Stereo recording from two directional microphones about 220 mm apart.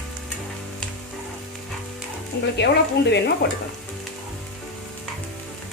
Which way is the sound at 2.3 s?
50° left (ahead or behind).